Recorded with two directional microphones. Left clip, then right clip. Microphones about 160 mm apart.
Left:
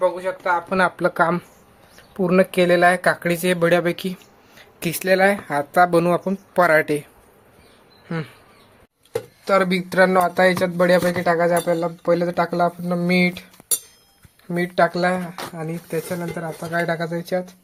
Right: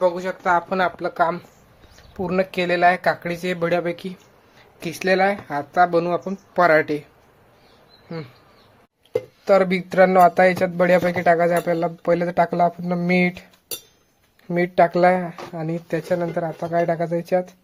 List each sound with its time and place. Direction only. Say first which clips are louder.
0.0 s speech: even; 20° right (ahead or behind)
0.8 s speech: left 2 dB; 20° left (ahead or behind)
2.1 s speech: left 5 dB; 15° left (ahead or behind)
9.4 s speech: right 1 dB; 10° left (ahead or behind)
14.8 s speech: right 3 dB; 25° right (ahead or behind)
15.5 s speech: right 2 dB; centre (ahead or behind)